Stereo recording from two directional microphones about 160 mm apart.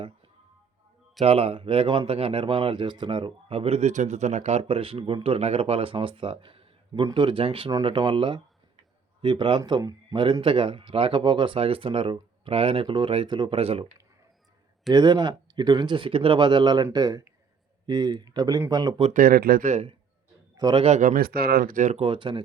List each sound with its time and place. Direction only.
1.2 s speech: 35° right (ahead or behind)
14.9 s speech: 25° right (ahead or behind)
19.1 s speech: 65° right (ahead or behind)
19.7 s speech: 35° right (ahead or behind)
20.6 s a man's voice: 25° right (ahead or behind)
20.8 s speech: 45° right (ahead or behind)
22.0 s speech: 30° right (ahead or behind)